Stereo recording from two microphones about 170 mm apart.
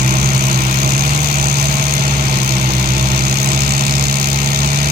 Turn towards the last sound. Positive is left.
turn(degrees=-70)  # may be behind; listen again after turning